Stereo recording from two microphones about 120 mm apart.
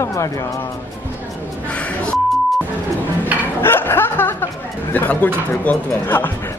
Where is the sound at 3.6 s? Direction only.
20° left (ahead or behind).